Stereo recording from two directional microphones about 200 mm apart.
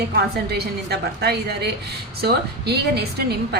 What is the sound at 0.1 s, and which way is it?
A woman's voice, 55° right (ahead or behind).